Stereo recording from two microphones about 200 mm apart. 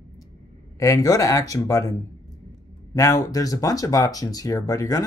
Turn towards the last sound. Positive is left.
turn(degrees=15)  # may be behind; listen again after turning